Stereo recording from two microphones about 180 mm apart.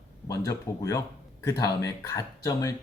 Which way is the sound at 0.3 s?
20° left (ahead or behind).